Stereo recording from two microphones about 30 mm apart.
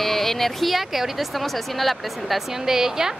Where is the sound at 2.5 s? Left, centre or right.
Centre.